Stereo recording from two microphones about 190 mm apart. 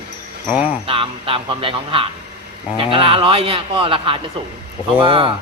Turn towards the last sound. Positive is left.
turn(degrees=-25)  # may be behind; listen again after turning